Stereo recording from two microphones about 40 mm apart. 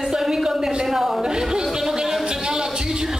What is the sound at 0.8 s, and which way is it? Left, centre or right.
Speech, centre.